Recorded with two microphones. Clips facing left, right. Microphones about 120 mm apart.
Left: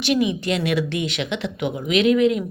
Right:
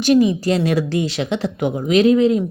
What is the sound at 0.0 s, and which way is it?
A woman's voice, 35° right (ahead or behind).